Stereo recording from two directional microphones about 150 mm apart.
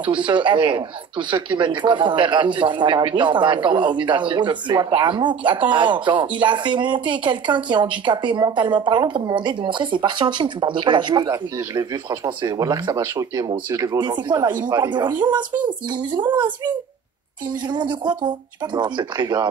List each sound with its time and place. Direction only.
0.0 s speech: 30° right (ahead or behind)
16.3 s speech: 30° right (ahead or behind)
17.7 s speech: 30° right (ahead or behind)